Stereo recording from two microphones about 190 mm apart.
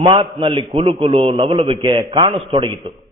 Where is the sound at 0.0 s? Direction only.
25° right (ahead or behind).